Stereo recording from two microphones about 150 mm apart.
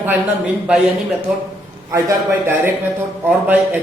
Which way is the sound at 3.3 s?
10° right (ahead or behind).